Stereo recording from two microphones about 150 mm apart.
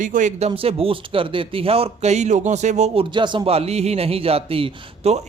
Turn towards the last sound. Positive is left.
turn(degrees=-40)  # may be behind; listen again after turning